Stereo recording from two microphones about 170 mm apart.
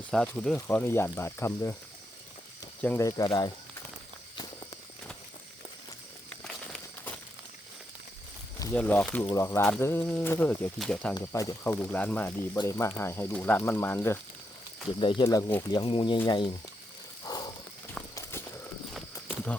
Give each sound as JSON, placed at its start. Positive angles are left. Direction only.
{"t": 0.1, "sound": "speech", "side_deg": 5}
{"t": 2.8, "sound": "speech", "side_deg": 15}
{"t": 6.4, "sound": "a sound", "side_deg": 5}
{"t": 8.7, "sound": "speech", "side_deg": 10}
{"t": 11.1, "sound": "speech", "side_deg": 20}
{"t": 14.9, "sound": "speech", "side_deg": 30}
{"t": 17.2, "sound": "snake", "side_deg": 20}
{"t": 17.9, "sound": "clip-clop", "side_deg": 15}